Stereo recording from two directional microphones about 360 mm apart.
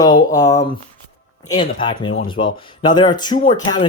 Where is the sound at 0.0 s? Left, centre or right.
Centre.